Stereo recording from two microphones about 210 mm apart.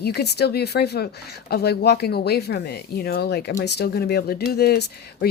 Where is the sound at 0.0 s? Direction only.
50° left (ahead or behind).